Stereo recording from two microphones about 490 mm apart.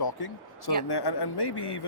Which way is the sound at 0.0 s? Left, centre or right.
Left.